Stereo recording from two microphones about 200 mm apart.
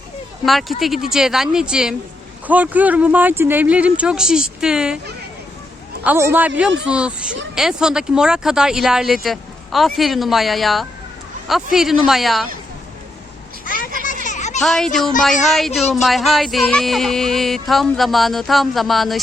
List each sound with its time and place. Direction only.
0.4 s speech: centre (ahead or behind)
6.1 s speech: 10° right (ahead or behind)
14.3 s a sound: 35° left (ahead or behind)
14.6 s speech: centre (ahead or behind)